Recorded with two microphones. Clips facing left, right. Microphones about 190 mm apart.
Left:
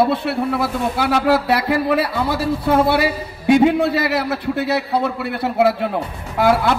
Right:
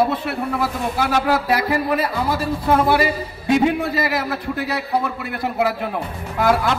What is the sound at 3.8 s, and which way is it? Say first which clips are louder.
Speech: left 4 dB; 70° left (ahead or behind).